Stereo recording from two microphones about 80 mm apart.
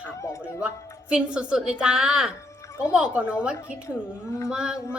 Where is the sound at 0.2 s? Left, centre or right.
Left.